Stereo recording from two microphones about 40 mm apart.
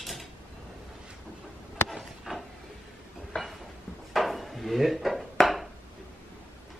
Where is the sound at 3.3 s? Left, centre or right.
Left.